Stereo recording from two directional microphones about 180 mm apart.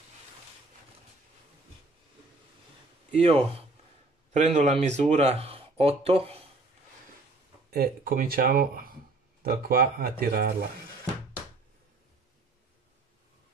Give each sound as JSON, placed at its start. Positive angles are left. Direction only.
{"t": 3.1, "sound": "speech", "side_deg": -35}
{"t": 7.7, "sound": "speech", "side_deg": -60}